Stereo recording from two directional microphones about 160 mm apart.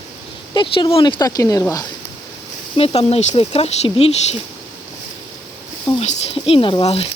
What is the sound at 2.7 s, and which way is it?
Speech, 40° left (ahead or behind).